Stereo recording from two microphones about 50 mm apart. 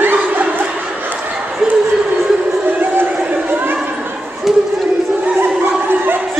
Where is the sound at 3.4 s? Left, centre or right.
Right.